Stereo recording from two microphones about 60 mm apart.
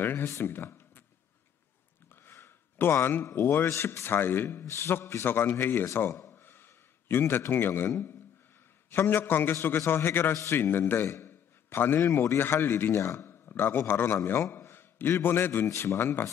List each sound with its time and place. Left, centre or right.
0.0 s a man's voice: left
2.2 s a sound: left
3.3 s a man's voice: left
3.7 s a man's voice: left
6.4 s a sound: left
8.9 s a man's voice: left
10.3 s speech: left
10.6 s a man's voice: left
12.4 s a man's voice: left
15.6 s speech: left